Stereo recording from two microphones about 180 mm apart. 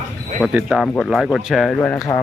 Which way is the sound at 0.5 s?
5° right (ahead or behind).